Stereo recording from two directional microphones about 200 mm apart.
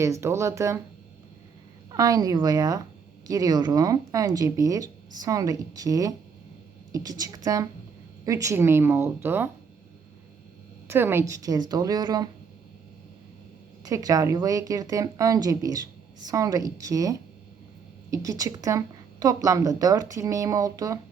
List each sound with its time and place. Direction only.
0.0 s a woman's voice: 15° right (ahead or behind)
1.9 s a woman's voice: 20° right (ahead or behind)
10.8 s a woman's voice: 10° right (ahead or behind)
13.8 s a woman's voice: 15° right (ahead or behind)